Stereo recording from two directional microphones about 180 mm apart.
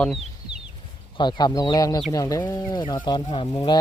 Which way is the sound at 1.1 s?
25° left (ahead or behind).